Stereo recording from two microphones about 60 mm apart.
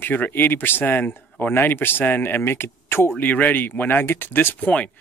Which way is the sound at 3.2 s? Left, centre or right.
Left.